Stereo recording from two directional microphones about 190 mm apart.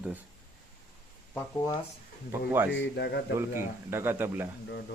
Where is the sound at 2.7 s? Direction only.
65° left (ahead or behind).